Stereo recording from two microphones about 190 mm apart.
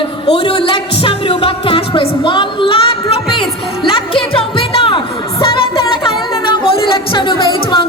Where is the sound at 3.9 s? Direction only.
30° left (ahead or behind).